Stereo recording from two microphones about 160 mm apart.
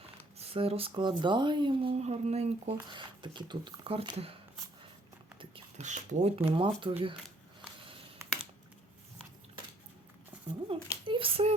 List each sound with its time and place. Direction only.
0.3 s speech: 35° right (ahead or behind)
2.8 s speech: 30° right (ahead or behind)
5.4 s beatboxing: 35° right (ahead or behind)
5.8 s speech: 50° right (ahead or behind); by 6.9 s 30° right (ahead or behind)
8.2 s computer keyboard: 15° right (ahead or behind)
10.7 s a sound: 35° right (ahead or behind)
11.0 s speech: 35° right (ahead or behind)